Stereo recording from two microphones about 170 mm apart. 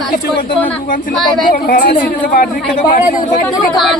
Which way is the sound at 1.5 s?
55° left (ahead or behind).